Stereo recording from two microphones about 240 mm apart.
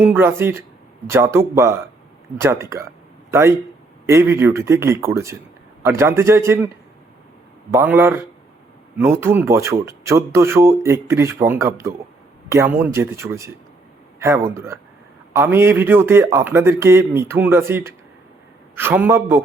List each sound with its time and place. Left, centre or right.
0.0 s speech: centre
7.7 s speech: centre